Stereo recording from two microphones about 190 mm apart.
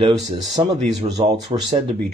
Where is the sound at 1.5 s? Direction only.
30° right (ahead or behind).